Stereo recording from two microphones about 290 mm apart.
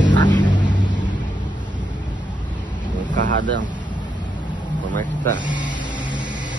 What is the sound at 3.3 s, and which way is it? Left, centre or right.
Speech, right.